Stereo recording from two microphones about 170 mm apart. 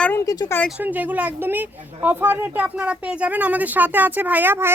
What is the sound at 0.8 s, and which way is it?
A woman's voice, 10° right (ahead or behind).